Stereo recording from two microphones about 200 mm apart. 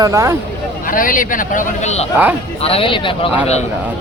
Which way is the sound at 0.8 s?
45° left (ahead or behind).